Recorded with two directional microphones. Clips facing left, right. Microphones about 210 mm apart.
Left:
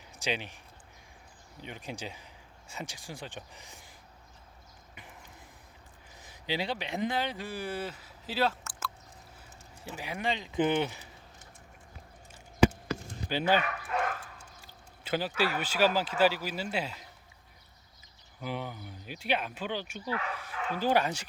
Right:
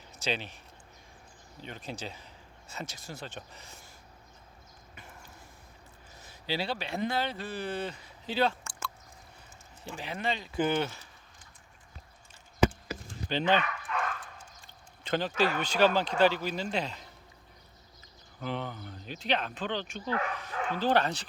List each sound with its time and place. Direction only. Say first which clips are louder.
0.2 s speech: even; 15° left (ahead or behind)
1.6 s speech: even; 15° left (ahead or behind)
6.2 s speech: even; 15° left (ahead or behind)
13.2 s speech: even; 10° left (ahead or behind)
14.6 s a sound: left 1 dB; 5° left (ahead or behind)
15.5 s speech: right 1 dB; 5° left (ahead or behind)
18.3 s speech: right 1 dB; 10° left (ahead or behind)